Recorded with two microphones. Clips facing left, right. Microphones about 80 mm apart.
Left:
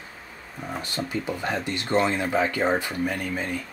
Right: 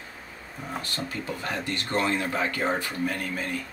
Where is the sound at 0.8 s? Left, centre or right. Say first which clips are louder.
Left 4 dB; centre.